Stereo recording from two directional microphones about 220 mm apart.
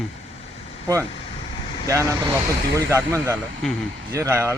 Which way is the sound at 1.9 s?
15° right (ahead or behind).